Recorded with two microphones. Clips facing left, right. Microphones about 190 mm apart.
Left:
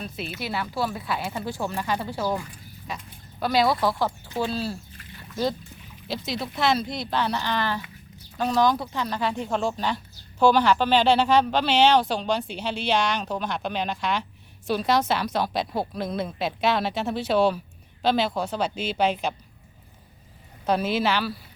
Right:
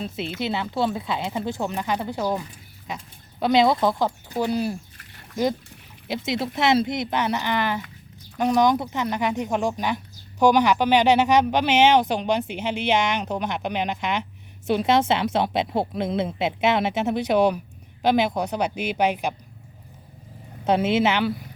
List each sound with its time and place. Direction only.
0.3 s a woman's voice: 20° right (ahead or behind)
6.1 s a woman's voice: 25° right (ahead or behind)
20.7 s a woman's voice: 25° right (ahead or behind)